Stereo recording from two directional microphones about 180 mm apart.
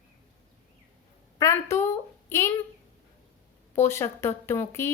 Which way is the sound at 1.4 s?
15° left (ahead or behind).